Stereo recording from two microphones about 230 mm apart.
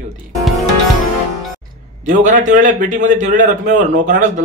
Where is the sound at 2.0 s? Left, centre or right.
Right.